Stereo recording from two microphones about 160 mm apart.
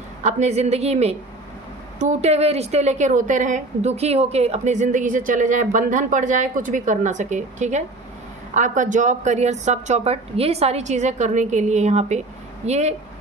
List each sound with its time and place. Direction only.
0.2 s a woman's voice: 45° right (ahead or behind)